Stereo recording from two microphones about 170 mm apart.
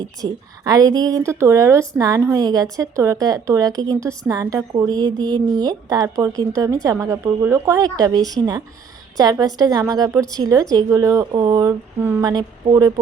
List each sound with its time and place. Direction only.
0.0 s a woman's voice: 20° right (ahead or behind)